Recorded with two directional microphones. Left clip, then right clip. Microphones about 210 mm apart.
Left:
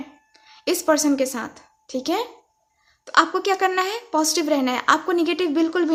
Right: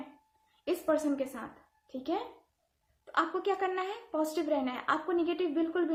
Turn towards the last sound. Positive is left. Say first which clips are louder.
# left 10 dB
turn(degrees=45)  # may be behind; listen again after turning